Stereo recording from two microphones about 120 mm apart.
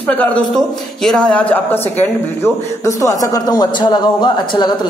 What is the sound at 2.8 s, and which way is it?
A man's voice, 25° left (ahead or behind).